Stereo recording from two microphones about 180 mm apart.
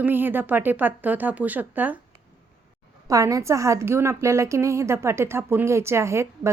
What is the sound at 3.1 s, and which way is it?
A woman's voice, 20° right (ahead or behind).